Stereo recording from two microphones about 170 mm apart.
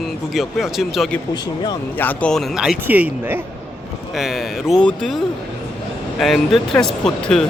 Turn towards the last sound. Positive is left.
turn(degrees=5)  # may be behind; listen again after turning